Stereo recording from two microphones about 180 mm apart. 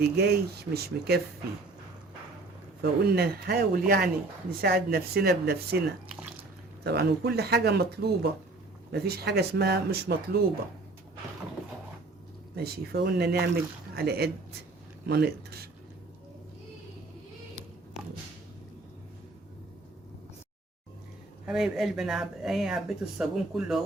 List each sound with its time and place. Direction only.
0.2 s speech: 60° right (ahead or behind)
3.0 s speech: 60° right (ahead or behind)
12.5 s speech: 60° right (ahead or behind)
21.4 s speech: centre (ahead or behind)